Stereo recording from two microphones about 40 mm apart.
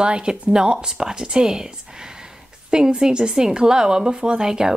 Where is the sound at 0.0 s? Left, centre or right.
Right.